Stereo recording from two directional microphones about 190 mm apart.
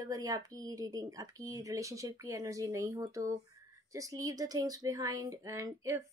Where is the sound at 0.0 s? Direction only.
20° right (ahead or behind).